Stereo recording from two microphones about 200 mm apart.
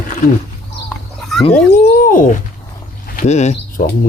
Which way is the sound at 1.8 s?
40° left (ahead or behind).